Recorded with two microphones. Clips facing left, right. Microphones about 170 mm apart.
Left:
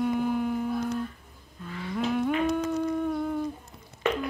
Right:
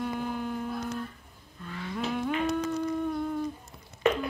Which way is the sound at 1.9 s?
Centre (ahead or behind).